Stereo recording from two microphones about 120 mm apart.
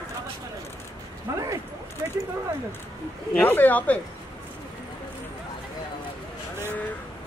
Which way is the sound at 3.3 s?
15° left (ahead or behind).